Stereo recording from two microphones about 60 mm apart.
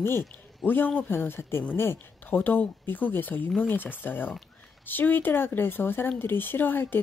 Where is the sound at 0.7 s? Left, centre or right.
Left.